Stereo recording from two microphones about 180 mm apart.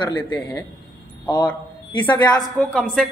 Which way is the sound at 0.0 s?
25° left (ahead or behind).